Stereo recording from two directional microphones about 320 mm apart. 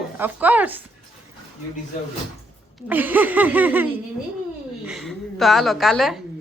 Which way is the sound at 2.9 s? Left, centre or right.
Centre.